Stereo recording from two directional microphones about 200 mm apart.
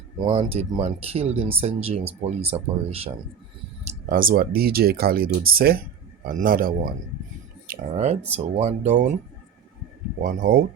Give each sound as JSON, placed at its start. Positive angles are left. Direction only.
{"t": 0.2, "sound": "speech", "side_deg": -30}
{"t": 4.1, "sound": "speech", "side_deg": -45}
{"t": 7.7, "sound": "speech", "side_deg": -35}
{"t": 10.2, "sound": "speech", "side_deg": -45}